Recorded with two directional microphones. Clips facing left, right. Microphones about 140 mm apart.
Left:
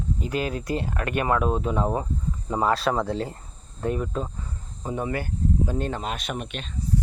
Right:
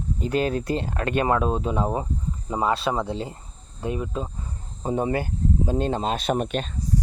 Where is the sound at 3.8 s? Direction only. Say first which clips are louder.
Left 1 dB; 20° right (ahead or behind).